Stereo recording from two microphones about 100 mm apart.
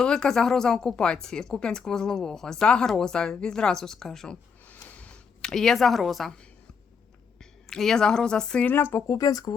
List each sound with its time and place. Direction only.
0.0 s speech: 5° left (ahead or behind)
4.9 s a sound: 10° left (ahead or behind)
7.7 s speech: 5° left (ahead or behind)
8.6 s speech: 20° left (ahead or behind); by 9.6 s 40° left (ahead or behind)